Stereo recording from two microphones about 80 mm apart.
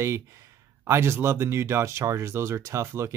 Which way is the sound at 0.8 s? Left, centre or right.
Right.